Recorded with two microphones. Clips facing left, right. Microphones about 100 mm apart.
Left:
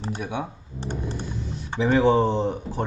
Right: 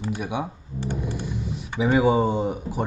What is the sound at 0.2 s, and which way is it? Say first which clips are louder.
Speech: right 1 dB; 10° right (ahead or behind).